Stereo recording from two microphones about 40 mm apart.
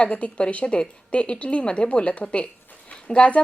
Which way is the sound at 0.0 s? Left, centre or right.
Left.